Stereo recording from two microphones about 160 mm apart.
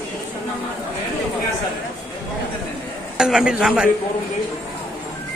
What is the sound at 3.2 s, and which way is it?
Speech, 5° right (ahead or behind).